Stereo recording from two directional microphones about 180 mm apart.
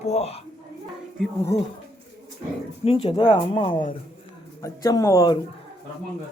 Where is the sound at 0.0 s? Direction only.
35° left (ahead or behind).